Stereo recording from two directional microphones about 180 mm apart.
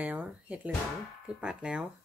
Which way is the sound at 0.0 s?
10° right (ahead or behind).